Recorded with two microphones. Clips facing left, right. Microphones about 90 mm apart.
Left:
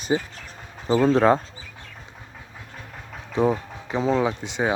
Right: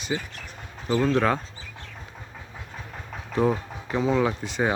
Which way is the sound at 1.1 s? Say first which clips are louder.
Left 6 dB; 30° left (ahead or behind).